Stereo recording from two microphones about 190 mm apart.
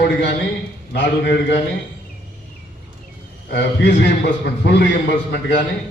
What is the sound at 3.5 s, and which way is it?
A man's voice, 65° left (ahead or behind).